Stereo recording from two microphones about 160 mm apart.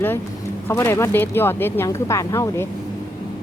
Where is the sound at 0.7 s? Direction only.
15° left (ahead or behind).